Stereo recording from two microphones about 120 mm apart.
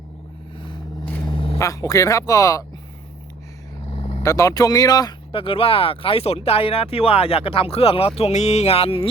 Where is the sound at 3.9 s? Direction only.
60° left (ahead or behind).